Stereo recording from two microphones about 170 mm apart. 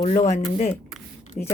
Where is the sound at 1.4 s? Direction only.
5° left (ahead or behind).